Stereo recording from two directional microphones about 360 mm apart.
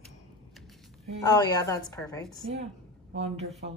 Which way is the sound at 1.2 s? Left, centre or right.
Centre.